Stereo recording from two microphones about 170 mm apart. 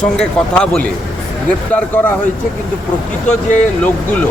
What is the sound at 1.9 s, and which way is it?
Speech, 10° left (ahead or behind).